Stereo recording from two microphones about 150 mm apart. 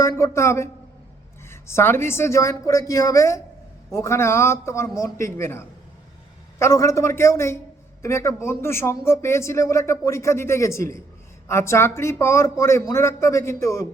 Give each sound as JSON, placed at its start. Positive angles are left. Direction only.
{"t": 0.0, "sound": "a man's voice", "side_deg": 20}